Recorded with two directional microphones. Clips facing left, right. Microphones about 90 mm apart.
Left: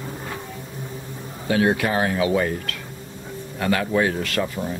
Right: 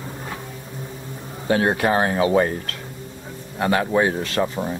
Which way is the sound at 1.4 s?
35° right (ahead or behind).